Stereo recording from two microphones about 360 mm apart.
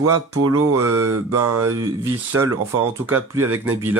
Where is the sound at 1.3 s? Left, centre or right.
Right.